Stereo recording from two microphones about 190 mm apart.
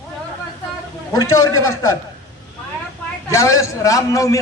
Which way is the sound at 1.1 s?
20° left (ahead or behind).